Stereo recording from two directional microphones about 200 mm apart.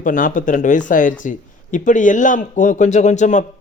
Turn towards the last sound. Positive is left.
turn(degrees=40)  # may be behind; listen again after turning